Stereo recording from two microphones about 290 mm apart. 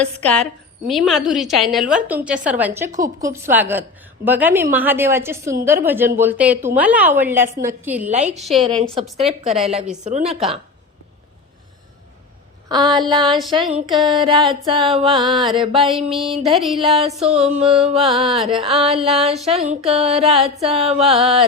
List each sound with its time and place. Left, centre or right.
0.0 s a woman's voice: centre
8.0 s a woman's voice: right
8.4 s a woman's voice: centre
8.8 s a woman's voice: centre
12.6 s a woman's voice: centre
14.0 s a woman's voice: centre
14.3 s a woman's voice: centre
15.1 s a woman's voice: centre
15.4 s a woman's voice: centre
15.8 s a woman's voice: centre
17.0 s a woman's voice: right
18.0 s a woman's voice: centre
19.5 s a woman's voice: right
21.1 s a woman's voice: centre